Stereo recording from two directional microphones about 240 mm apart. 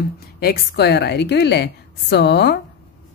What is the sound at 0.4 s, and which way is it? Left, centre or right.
A woman's voice, left.